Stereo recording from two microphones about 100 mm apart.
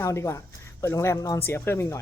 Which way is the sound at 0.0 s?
30° left (ahead or behind).